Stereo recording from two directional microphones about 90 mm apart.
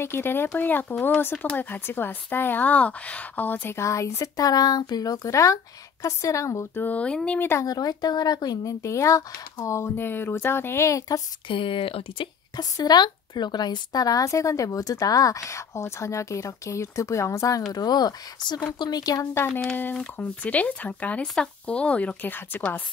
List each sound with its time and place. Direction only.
0.0 s a woman's voice: 25° left (ahead or behind)
6.8 s speech: 15° left (ahead or behind)
7.6 s speech: 45° left (ahead or behind)
8.8 s a woman's voice: 35° left (ahead or behind)
11.4 s speech: 70° left (ahead or behind); by 12.3 s 90° left
12.5 s a woman's voice: 50° left (ahead or behind)
17.7 s speech: 50° left (ahead or behind)
19.3 s speech: 25° left (ahead or behind)
20.0 s speech: 15° left (ahead or behind)